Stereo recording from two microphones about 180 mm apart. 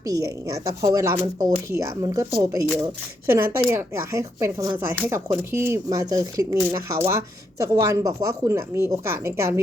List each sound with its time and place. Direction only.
0.0 s speech: 20° right (ahead or behind)